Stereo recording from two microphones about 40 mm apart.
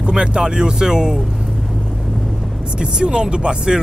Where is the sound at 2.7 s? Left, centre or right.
Right.